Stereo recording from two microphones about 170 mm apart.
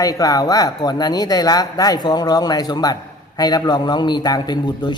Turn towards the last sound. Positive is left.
turn(degrees=25)  # may be behind; listen again after turning